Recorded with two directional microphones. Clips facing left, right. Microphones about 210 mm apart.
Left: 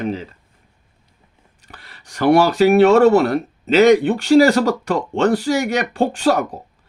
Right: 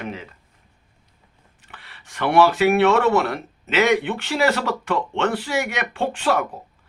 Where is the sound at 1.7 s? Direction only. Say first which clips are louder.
Left 3 dB; 40° left (ahead or behind).